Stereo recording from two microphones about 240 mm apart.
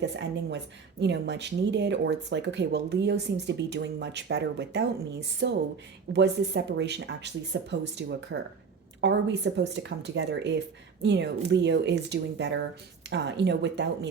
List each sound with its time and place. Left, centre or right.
0.0 s speech: right